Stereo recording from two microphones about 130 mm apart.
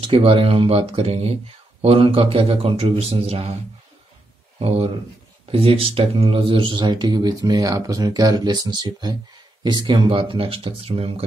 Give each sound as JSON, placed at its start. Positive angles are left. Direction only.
{"t": 0.0, "sound": "a man's voice", "side_deg": -45}
{"t": 4.6, "sound": "a man's voice", "side_deg": -45}